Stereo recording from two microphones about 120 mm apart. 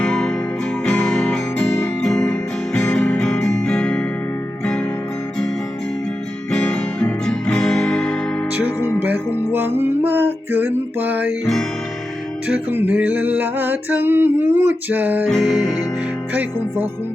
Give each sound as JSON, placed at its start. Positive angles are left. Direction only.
{"t": 0.0, "sound": "music", "side_deg": 5}
{"t": 3.4, "sound": "guitar", "side_deg": 5}
{"t": 4.6, "sound": "music", "side_deg": 10}
{"t": 6.5, "sound": "music", "side_deg": 10}
{"t": 8.6, "sound": "music", "side_deg": -15}
{"t": 12.5, "sound": "music", "side_deg": -15}
{"t": 15.3, "sound": "music", "side_deg": 0}
{"t": 16.3, "sound": "music", "side_deg": -15}